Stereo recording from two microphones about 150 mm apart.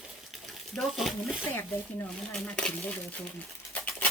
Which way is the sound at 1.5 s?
15° left (ahead or behind).